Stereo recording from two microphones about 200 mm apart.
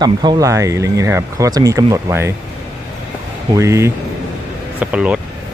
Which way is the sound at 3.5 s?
15° right (ahead or behind).